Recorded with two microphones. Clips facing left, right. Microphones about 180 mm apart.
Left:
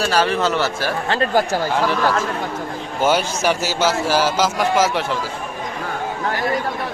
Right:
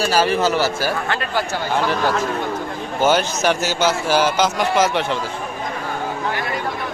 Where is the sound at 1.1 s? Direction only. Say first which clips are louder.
Left 5 dB; 40° left (ahead or behind).